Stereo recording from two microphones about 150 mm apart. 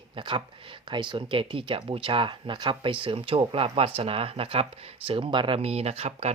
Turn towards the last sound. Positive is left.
turn(degrees=-45)  # may be behind; listen again after turning